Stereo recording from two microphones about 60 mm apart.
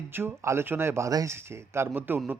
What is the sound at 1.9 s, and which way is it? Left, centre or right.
Speech, right.